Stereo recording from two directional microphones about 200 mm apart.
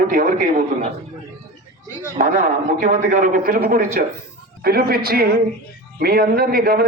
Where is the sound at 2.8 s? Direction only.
40° right (ahead or behind).